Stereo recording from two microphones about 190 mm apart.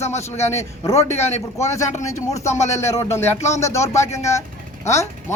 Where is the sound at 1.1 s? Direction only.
35° left (ahead or behind).